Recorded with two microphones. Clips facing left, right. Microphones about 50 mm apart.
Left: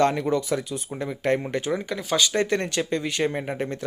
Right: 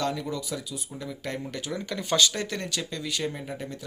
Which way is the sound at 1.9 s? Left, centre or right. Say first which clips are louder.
Right 3 dB; centre.